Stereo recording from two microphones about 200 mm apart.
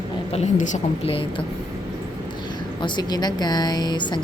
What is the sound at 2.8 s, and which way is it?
A woman's voice, 20° left (ahead or behind).